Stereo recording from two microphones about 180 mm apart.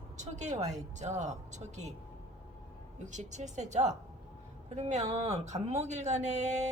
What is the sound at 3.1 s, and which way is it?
Speech, 40° right (ahead or behind).